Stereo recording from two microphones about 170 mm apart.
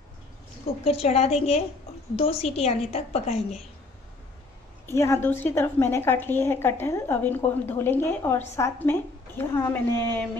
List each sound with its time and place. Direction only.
0.8 s a woman's voice: 35° left (ahead or behind)
4.8 s a woman's voice: 15° left (ahead or behind)